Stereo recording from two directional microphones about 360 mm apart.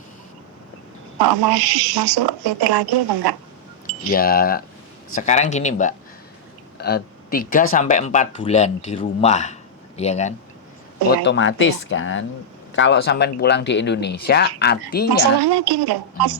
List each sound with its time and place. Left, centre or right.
1.2 s speech: right
4.1 s speech: left
11.1 s speech: left
15.4 s speech: right